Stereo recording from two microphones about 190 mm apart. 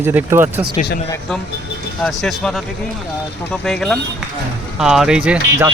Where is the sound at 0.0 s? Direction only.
10° right (ahead or behind).